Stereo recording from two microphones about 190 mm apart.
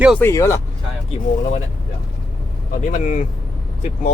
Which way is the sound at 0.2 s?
15° left (ahead or behind).